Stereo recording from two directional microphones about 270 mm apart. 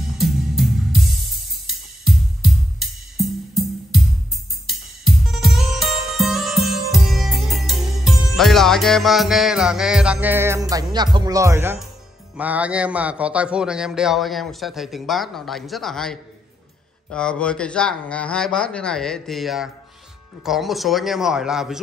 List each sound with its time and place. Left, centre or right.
0.2 s music: centre
8.4 s a man's voice: centre